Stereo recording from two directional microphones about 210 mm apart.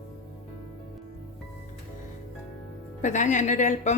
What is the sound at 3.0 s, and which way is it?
Speech, 35° left (ahead or behind).